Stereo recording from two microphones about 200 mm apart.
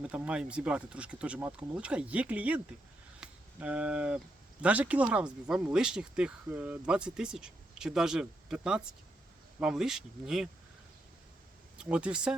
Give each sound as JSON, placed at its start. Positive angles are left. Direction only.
{"t": 0.0, "sound": "speech", "side_deg": -5}
{"t": 3.2, "sound": "a sound", "side_deg": -5}
{"t": 4.6, "sound": "speech", "side_deg": -5}
{"t": 11.8, "sound": "speech", "side_deg": -5}